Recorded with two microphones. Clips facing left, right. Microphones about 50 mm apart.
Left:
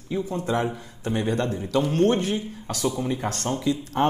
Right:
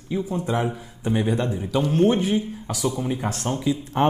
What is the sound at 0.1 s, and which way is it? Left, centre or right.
Speech, centre.